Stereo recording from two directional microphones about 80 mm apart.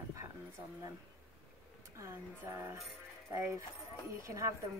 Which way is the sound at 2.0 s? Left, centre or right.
Right.